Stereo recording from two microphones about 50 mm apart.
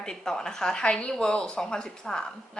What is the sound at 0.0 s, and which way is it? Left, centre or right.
A woman's voice, centre.